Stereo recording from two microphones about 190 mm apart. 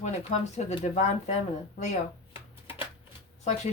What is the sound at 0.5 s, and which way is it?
Speech, 35° left (ahead or behind).